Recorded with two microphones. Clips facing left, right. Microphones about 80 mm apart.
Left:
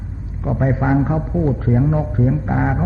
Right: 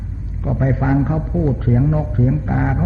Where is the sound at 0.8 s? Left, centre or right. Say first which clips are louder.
Even; left.